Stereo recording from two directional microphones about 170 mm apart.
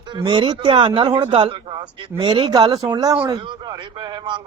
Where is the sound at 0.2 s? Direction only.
25° right (ahead or behind).